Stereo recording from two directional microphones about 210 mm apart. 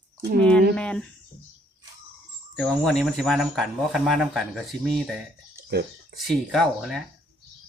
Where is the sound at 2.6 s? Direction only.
Centre (ahead or behind).